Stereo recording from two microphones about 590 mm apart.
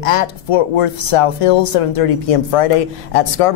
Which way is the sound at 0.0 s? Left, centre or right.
Left.